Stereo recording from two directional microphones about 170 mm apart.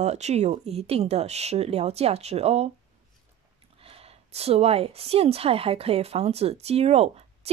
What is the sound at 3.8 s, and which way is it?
A woman's voice, 35° right (ahead or behind).